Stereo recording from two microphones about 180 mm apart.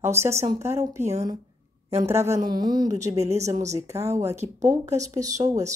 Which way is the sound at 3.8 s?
15° right (ahead or behind).